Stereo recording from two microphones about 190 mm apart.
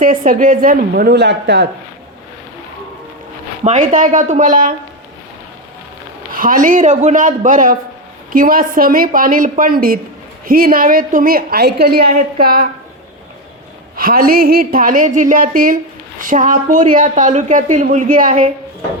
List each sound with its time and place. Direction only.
0.0 s a woman's voice: 45° right (ahead or behind); by 1.6 s 65° right (ahead or behind)
3.6 s a woman's voice: 40° right (ahead or behind)
6.3 s a woman's voice: 45° right (ahead or behind)
13.9 s a woman's voice: 50° right (ahead or behind)